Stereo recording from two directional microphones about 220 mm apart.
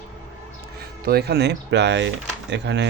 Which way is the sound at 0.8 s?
45° right (ahead or behind).